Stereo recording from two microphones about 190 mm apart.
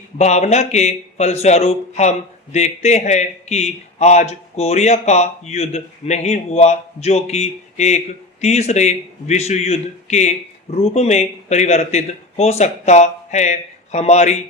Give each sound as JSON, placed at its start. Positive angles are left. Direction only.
{"t": 0.2, "sound": "speech", "side_deg": 35}